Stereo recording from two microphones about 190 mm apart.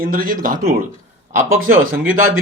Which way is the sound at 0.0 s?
50° right (ahead or behind).